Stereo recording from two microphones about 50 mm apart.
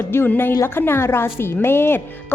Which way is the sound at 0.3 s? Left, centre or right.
Left.